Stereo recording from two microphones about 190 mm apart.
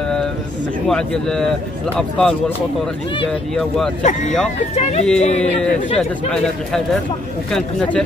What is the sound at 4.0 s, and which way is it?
Speech, 40° left (ahead or behind).